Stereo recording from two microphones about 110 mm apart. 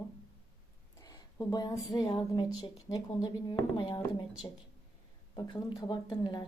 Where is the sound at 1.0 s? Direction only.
35° left (ahead or behind).